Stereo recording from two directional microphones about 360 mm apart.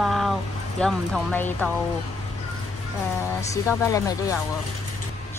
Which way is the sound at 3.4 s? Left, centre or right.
Centre.